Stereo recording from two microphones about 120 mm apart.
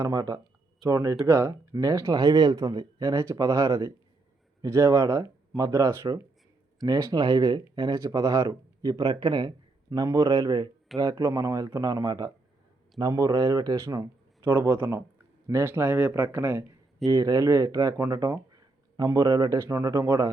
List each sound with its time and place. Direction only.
0.0 s speech: 30° right (ahead or behind)
17.1 s speech: 30° right (ahead or behind)